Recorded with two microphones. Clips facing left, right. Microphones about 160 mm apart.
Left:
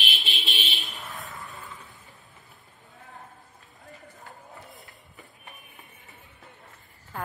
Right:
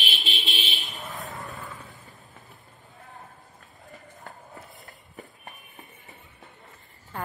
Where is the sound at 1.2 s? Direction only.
40° right (ahead or behind).